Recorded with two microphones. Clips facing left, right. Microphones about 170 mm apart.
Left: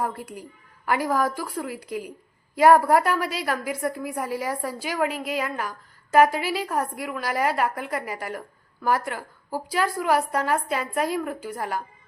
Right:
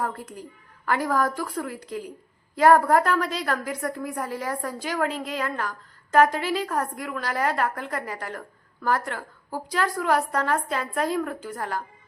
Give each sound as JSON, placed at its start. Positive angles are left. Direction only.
{"t": 0.0, "sound": "a woman's voice", "side_deg": 10}